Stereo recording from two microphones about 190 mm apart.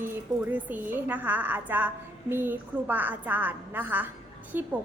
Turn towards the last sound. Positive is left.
turn(degrees=-10)  # may be behind; listen again after turning